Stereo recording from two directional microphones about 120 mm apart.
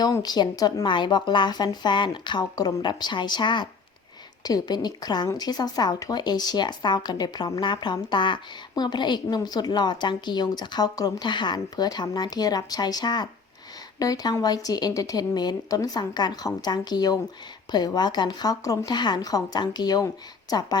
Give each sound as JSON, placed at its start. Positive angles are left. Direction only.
{"t": 0.0, "sound": "speech", "side_deg": 35}